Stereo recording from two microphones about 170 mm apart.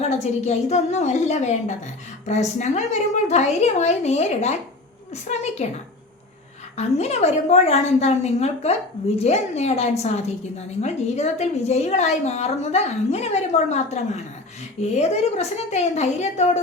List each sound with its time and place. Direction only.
0.0 s a woman's voice: 40° left (ahead or behind)
6.7 s a woman's voice: 40° left (ahead or behind)